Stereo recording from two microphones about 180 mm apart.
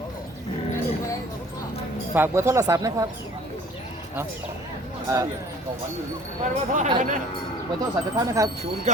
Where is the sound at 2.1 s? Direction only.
15° right (ahead or behind).